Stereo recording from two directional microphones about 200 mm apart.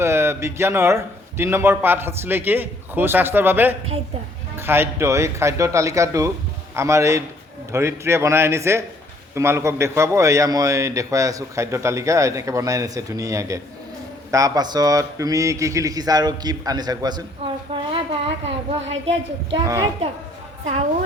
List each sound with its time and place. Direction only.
0.0 s a man's voice: 10° right (ahead or behind)
17.7 s a sound: 25° right (ahead or behind)
18.9 s a man's voice: 30° right (ahead or behind)